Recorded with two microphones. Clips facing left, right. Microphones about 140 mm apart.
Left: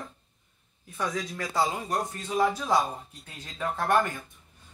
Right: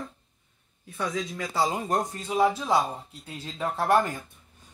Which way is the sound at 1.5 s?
30° right (ahead or behind).